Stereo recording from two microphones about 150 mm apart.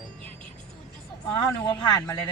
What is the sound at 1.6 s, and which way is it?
Speech, 30° left (ahead or behind).